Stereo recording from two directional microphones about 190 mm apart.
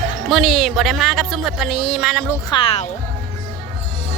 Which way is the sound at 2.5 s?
30° left (ahead or behind).